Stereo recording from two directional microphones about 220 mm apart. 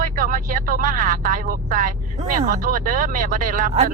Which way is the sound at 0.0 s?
35° right (ahead or behind).